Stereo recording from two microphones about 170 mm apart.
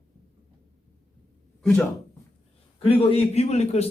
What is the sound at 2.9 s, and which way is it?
Speech, 35° left (ahead or behind).